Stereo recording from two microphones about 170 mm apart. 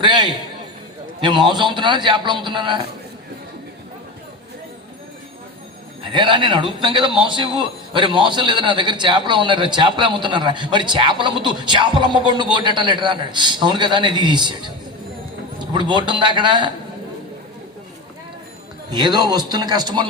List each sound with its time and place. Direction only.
0.0 s a man's voice: 25° right (ahead or behind)
6.0 s a man's voice: 30° right (ahead or behind)
15.5 s a man's voice: 25° right (ahead or behind)
18.9 s a man's voice: 25° right (ahead or behind)